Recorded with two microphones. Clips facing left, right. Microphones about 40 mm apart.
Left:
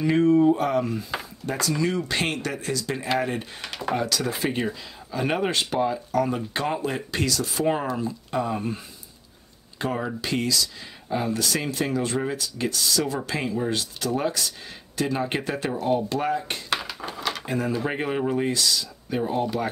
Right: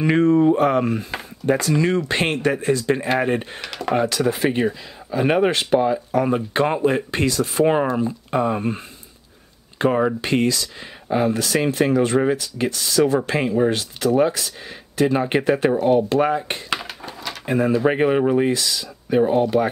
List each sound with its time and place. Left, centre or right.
0.0 s a sound: right
0.6 s speech: right
4.5 s speech: right
6.2 s speech: right
14.0 s speech: right